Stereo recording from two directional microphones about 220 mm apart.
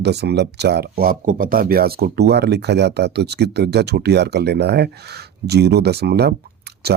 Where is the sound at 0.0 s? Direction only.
50° right (ahead or behind).